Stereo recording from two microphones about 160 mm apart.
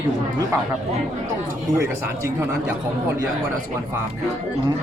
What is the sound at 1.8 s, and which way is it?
Speech, 15° right (ahead or behind).